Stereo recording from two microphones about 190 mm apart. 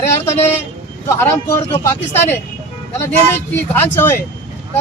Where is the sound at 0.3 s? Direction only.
10° left (ahead or behind).